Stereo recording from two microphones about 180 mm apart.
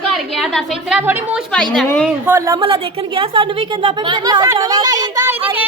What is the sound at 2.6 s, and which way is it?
A woman's voice, 30° right (ahead or behind).